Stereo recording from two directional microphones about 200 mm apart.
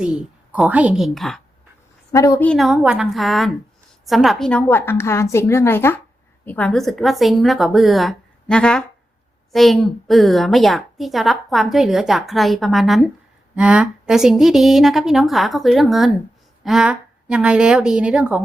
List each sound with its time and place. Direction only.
0.0 s a woman's voice: 5° right (ahead or behind)
2.1 s a woman's voice: 15° left (ahead or behind)
2.5 s a woman's voice: centre (ahead or behind)